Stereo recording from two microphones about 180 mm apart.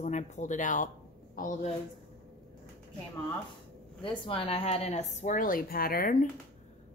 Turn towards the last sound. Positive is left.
turn(degrees=50)  # may be behind; listen again after turning